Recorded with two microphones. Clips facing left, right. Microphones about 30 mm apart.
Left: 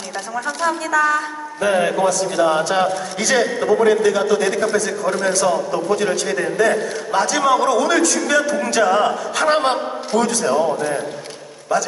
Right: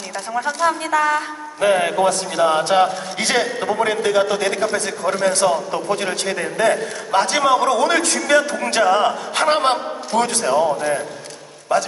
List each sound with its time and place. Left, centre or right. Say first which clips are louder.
0.7 s a man's voice: left 2 dB; right
9.5 s a sound: even; right
10.6 s a man's voice: right 1 dB; centre